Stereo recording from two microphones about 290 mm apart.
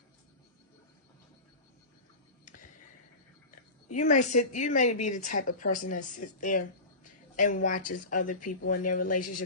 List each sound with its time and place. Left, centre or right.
3.9 s speech: left